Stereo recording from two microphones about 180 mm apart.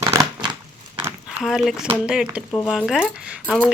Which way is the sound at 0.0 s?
15° right (ahead or behind).